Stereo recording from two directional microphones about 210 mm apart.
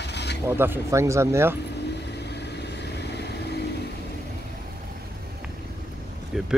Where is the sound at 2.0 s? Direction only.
55° left (ahead or behind).